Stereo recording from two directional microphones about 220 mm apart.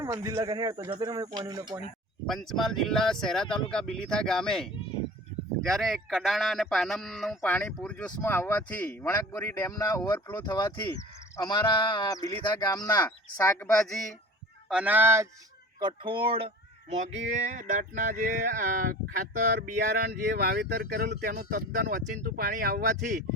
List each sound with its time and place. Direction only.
0.0 s speech: 15° right (ahead or behind)
2.2 s speech: centre (ahead or behind)
14.7 s speech: 5° right (ahead or behind)
15.8 s speech: 20° right (ahead or behind)
17.5 s speech: 35° right (ahead or behind)